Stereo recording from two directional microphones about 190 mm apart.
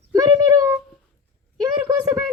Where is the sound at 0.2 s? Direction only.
20° right (ahead or behind).